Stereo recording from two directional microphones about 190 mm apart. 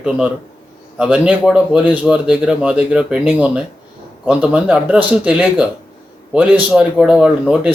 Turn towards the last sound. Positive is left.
turn(degrees=-5)  # may be behind; listen again after turning